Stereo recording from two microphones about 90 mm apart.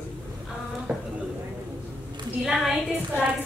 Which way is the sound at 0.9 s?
10° right (ahead or behind).